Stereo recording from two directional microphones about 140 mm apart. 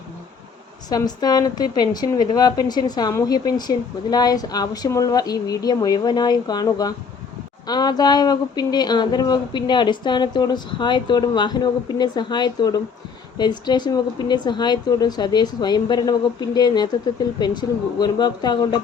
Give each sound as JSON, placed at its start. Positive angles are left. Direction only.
{"t": 0.9, "sound": "a woman's voice", "side_deg": 30}